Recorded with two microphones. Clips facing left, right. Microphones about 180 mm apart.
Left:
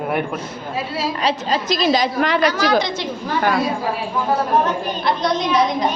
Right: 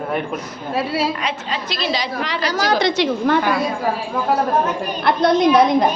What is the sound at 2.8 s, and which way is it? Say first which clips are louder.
Speech: right 7 dB; 70° right (ahead or behind).